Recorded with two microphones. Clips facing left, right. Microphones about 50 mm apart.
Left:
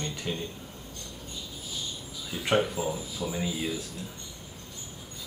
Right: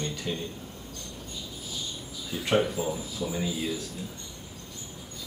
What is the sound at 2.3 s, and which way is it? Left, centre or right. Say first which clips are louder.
Speech: right 1 dB; centre.